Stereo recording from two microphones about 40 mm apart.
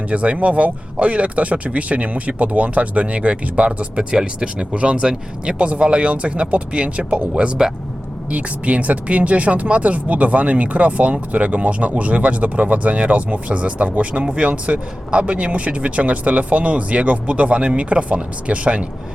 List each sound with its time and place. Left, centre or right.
0.1 s speech: right